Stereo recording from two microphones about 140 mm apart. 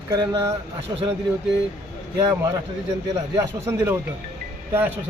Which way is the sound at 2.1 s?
20° right (ahead or behind).